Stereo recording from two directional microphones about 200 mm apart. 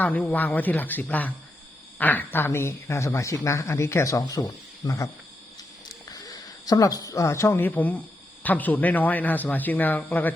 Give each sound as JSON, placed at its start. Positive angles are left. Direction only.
{"t": 0.0, "sound": "a woman's voice", "side_deg": 10}
{"t": 5.9, "sound": "a sound", "side_deg": 20}
{"t": 8.4, "sound": "a woman's voice", "side_deg": 10}